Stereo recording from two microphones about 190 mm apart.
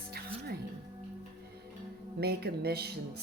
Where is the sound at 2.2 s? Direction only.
55° right (ahead or behind).